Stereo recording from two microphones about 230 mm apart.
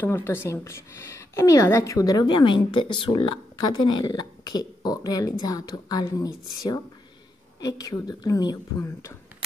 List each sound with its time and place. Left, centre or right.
0.0 s a woman's voice: centre